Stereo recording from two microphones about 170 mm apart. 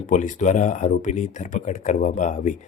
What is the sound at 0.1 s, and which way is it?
Speech, 45° left (ahead or behind).